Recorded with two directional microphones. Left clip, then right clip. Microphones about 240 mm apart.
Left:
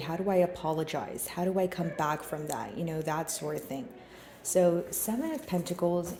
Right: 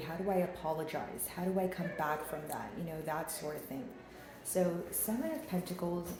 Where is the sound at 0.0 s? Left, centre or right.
Left.